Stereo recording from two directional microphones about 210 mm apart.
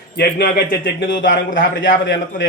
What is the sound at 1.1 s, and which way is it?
A man's voice, 60° left (ahead or behind).